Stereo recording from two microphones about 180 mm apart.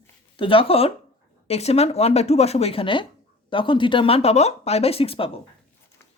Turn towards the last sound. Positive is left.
turn(degrees=30)  # may be behind; listen again after turning